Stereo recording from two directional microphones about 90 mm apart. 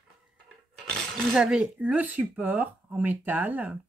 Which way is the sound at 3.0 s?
20° right (ahead or behind).